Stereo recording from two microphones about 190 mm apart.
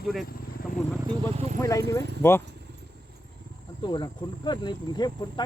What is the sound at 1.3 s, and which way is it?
Speech, 35° right (ahead or behind).